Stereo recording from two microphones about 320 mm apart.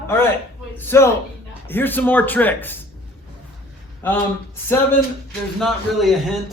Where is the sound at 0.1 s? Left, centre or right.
Centre.